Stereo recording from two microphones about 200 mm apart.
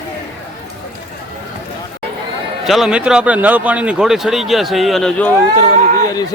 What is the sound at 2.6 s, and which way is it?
A man's voice, centre (ahead or behind).